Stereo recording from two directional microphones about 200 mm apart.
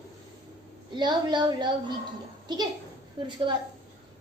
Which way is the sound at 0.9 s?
20° right (ahead or behind).